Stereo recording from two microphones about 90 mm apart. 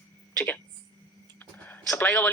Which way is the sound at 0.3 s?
20° left (ahead or behind).